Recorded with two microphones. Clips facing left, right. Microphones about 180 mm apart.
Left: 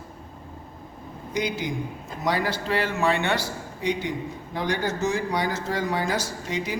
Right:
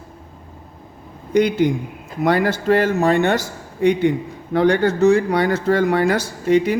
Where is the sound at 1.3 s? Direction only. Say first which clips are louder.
Right 12 dB; 55° right (ahead or behind).